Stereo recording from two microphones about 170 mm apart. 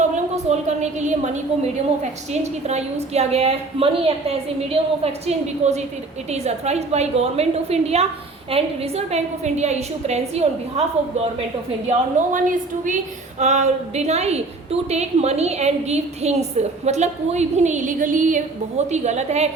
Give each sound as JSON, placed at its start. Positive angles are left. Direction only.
{"t": 0.8, "sound": "a woman's voice", "side_deg": -45}
{"t": 11.9, "sound": "a woman's voice", "side_deg": -50}